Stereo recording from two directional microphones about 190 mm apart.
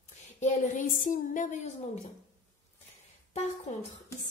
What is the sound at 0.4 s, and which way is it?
A woman's voice, 40° left (ahead or behind).